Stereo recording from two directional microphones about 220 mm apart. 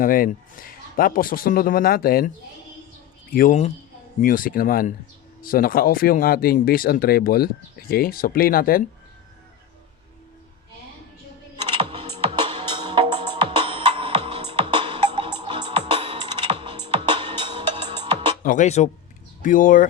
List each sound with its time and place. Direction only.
0.0 s a man's voice: 40° left (ahead or behind)
3.3 s a man's voice: 35° left (ahead or behind)
11.5 s music: 20° right (ahead or behind)
18.4 s a man's voice: 35° left (ahead or behind)